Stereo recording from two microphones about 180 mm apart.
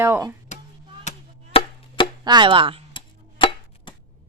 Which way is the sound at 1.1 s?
40° left (ahead or behind).